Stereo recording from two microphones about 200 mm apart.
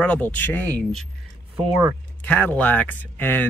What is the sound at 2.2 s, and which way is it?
Speech, 5° left (ahead or behind).